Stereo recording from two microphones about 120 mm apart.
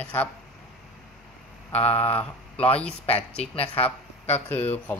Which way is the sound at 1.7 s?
60° left (ahead or behind).